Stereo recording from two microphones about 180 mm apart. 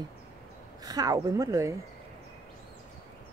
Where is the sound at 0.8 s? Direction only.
20° right (ahead or behind).